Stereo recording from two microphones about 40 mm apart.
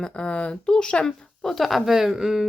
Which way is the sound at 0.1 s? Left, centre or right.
Left.